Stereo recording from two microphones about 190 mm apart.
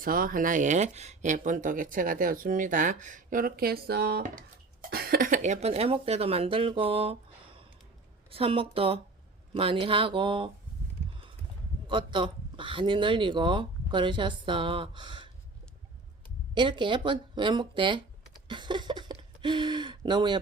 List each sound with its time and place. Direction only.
0.0 s speech: 50° right (ahead or behind)
4.2 s speech: 45° right (ahead or behind); by 7.2 s 30° right (ahead or behind)
8.3 s speech: 30° right (ahead or behind)
11.9 s speech: 25° right (ahead or behind)
16.6 s speech: 25° right (ahead or behind)
18.4 s a sound: 25° right (ahead or behind)